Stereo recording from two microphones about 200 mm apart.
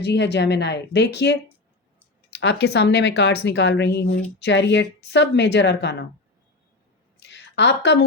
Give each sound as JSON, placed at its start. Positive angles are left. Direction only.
{"t": 0.0, "sound": "speech", "side_deg": 60}
{"t": 2.4, "sound": "speech", "side_deg": 60}
{"t": 7.2, "sound": "a sound", "side_deg": 60}